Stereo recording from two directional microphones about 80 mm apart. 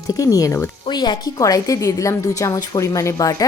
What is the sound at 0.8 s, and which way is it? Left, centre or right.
A woman's voice, left.